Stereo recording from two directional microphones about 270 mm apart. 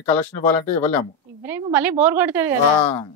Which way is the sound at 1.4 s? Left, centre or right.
Centre.